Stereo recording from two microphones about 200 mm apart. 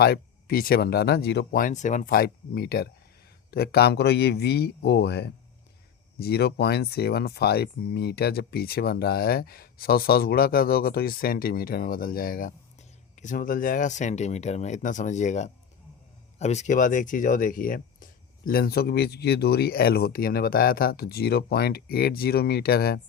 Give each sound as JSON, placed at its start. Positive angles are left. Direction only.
{"t": 0.0, "sound": "a man's voice", "side_deg": 50}